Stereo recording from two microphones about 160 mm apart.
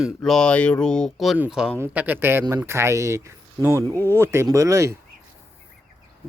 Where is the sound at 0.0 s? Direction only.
5° left (ahead or behind); by 4.9 s 20° right (ahead or behind).